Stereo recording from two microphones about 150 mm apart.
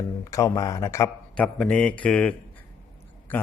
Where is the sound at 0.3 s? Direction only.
20° left (ahead or behind).